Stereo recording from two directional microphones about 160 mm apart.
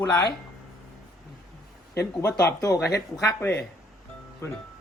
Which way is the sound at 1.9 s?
20° left (ahead or behind).